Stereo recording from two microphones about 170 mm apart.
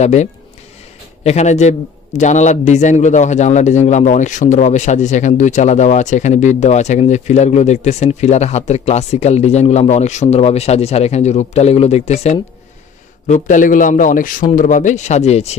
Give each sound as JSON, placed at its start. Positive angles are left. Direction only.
{"t": 0.0, "sound": "a man's voice", "side_deg": 45}